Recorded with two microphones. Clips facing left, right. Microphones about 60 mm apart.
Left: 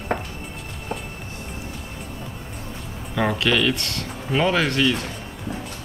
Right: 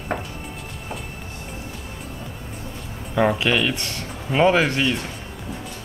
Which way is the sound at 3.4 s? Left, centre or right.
Centre.